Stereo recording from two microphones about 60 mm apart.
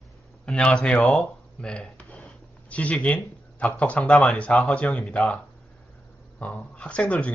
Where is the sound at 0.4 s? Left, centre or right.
Centre.